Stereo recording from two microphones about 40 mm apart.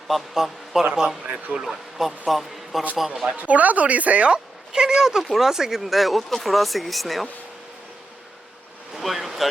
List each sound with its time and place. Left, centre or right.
0.1 s speech: centre
1.2 s speech: right
1.5 s speech: centre
3.3 s speech: right
4.3 s speech: centre
8.9 s a sound: centre